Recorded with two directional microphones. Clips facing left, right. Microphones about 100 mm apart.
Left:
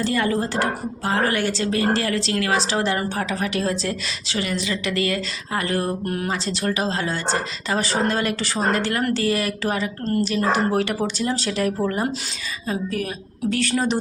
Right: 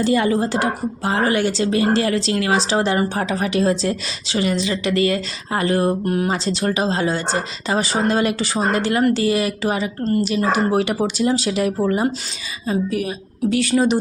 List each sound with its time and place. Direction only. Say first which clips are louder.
0.0 s a woman's voice: right 4 dB; 20° right (ahead or behind)